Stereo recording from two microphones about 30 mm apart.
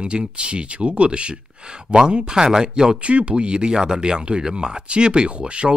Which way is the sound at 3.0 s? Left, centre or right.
Right.